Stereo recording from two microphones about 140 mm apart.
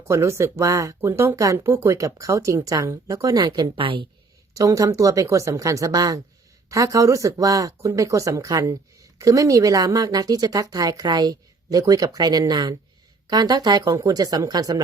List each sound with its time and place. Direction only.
0.1 s speech: 20° right (ahead or behind); by 4.0 s 40° right (ahead or behind)
4.5 s speech: 25° right (ahead or behind)